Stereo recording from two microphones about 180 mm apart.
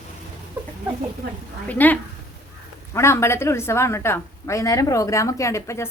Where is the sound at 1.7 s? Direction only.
10° left (ahead or behind).